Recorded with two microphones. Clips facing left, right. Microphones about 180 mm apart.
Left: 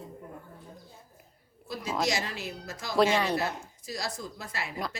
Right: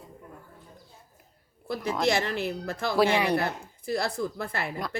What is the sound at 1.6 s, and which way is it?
A woman's voice, 60° right (ahead or behind).